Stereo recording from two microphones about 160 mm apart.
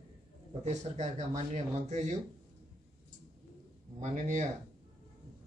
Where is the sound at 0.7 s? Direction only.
45° right (ahead or behind).